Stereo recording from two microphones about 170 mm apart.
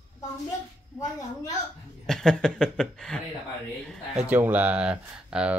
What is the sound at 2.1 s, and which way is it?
Speech, centre (ahead or behind).